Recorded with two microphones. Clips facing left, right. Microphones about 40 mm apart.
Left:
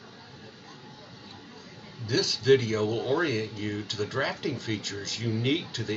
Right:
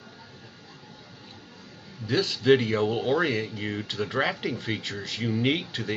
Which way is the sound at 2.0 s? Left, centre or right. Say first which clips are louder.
Right 1 dB; right.